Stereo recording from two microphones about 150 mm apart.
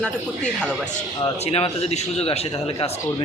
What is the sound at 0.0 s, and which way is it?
Speech, 5° left (ahead or behind).